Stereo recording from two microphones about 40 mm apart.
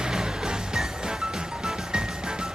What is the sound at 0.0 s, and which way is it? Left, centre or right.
Music, centre.